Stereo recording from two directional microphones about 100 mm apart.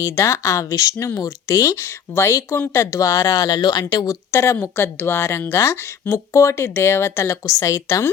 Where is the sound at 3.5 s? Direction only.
45° left (ahead or behind).